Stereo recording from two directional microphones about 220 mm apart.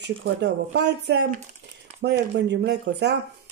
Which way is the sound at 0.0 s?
50° right (ahead or behind).